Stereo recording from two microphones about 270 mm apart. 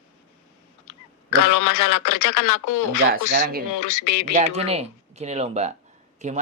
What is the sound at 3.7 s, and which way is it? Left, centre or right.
Speech, left.